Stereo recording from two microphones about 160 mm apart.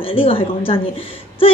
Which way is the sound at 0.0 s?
35° left (ahead or behind).